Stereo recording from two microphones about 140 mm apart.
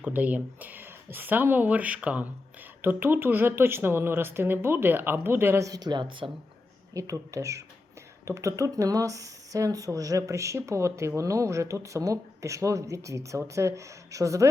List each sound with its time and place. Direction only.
0.0 s speech: 10° right (ahead or behind); by 6.3 s 35° right (ahead or behind)
6.9 s speech: 25° right (ahead or behind)